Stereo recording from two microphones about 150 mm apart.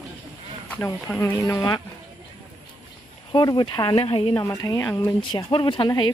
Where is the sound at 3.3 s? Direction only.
30° left (ahead or behind).